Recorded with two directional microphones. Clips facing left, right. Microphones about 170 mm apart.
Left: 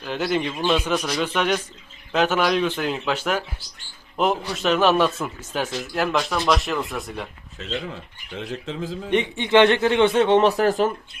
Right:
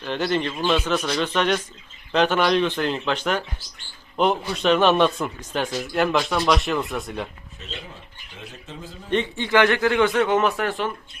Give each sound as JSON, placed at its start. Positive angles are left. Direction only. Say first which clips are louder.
{"t": 0.0, "sound": "a man's voice", "louder": "even", "side_deg": 5}
{"t": 8.4, "sound": "speech", "louder": "left 9 dB", "side_deg": 90}
{"t": 9.0, "sound": "a man's voice", "louder": "left 1 dB", "side_deg": 15}